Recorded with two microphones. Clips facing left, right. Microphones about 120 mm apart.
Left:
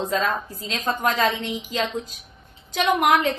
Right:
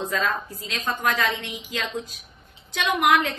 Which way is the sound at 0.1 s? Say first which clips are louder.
Left 2 dB; 35° left (ahead or behind).